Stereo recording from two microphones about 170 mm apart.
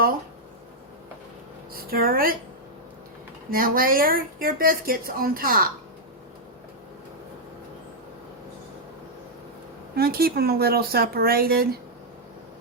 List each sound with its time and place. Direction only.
1.7 s speech: 60° right (ahead or behind)
3.5 s speech: 55° right (ahead or behind)
9.9 s speech: 65° right (ahead or behind)